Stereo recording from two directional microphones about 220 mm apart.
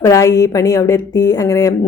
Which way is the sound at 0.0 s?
15° left (ahead or behind).